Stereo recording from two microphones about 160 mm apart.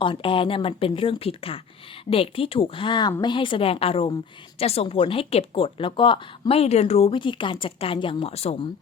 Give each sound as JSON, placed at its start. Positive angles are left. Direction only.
{"t": 0.0, "sound": "a woman's voice", "side_deg": 30}